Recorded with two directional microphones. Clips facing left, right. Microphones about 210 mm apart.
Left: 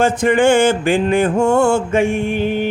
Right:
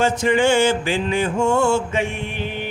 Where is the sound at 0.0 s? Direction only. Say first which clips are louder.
Left 4 dB; 55° left (ahead or behind).